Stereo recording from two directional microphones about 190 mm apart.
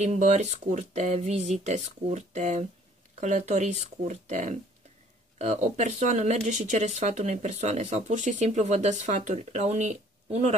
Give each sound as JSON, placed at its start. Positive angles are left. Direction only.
{"t": 0.0, "sound": "speech", "side_deg": -35}